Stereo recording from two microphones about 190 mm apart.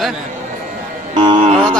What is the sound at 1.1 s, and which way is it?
Speech, 25° right (ahead or behind).